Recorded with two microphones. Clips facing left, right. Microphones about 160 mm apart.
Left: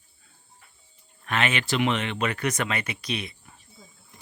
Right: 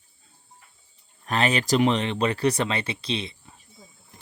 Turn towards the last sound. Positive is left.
turn(degrees=-20)  # may be behind; listen again after turning